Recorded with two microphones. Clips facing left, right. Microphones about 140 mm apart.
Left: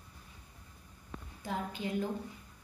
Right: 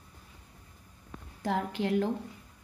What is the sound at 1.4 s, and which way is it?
Speech, 85° right.